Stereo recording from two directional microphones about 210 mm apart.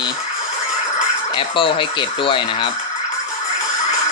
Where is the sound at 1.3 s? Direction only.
25° left (ahead or behind).